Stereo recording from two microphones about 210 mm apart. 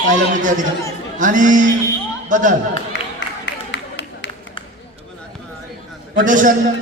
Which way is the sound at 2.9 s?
60° left (ahead or behind).